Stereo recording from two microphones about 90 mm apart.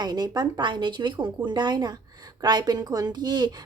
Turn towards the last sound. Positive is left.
turn(degrees=-55)  # may be behind; listen again after turning